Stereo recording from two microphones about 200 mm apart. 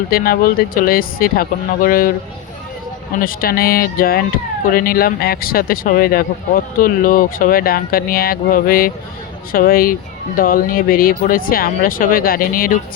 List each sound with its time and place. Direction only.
0.1 s speech: 45° left (ahead or behind)
3.2 s speech: 45° left (ahead or behind)